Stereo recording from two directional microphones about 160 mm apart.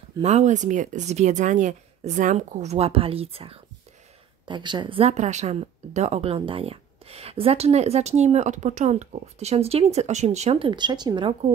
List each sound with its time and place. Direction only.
0.2 s speech: 45° right (ahead or behind); by 11.3 s 30° right (ahead or behind)